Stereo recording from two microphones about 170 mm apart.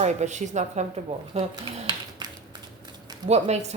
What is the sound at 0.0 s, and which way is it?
A woman's voice, 45° right (ahead or behind).